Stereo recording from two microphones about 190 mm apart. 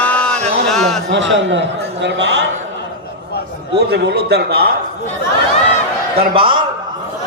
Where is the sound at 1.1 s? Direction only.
70° right (ahead or behind).